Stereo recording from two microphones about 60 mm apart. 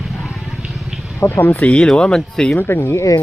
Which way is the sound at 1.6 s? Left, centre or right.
Centre.